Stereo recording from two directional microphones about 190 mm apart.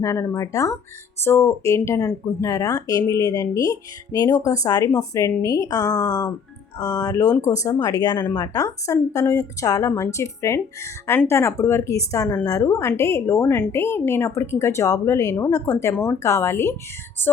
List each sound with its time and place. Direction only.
0.0 s speech: 15° left (ahead or behind)